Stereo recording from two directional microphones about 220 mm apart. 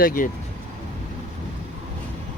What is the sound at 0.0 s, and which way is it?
Speech, 40° left (ahead or behind).